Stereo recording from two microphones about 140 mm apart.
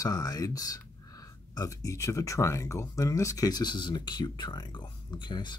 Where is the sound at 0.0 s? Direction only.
25° left (ahead or behind).